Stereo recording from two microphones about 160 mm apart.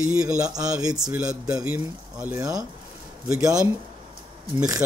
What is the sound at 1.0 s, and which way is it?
Speech, 5° right (ahead or behind).